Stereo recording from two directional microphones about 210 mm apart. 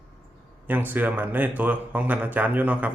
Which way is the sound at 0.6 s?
10° right (ahead or behind).